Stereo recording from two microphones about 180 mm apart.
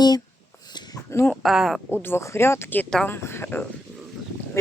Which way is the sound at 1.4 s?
Centre (ahead or behind).